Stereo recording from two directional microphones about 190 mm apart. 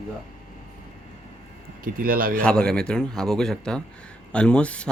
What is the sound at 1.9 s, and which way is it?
Speech, 50° right (ahead or behind).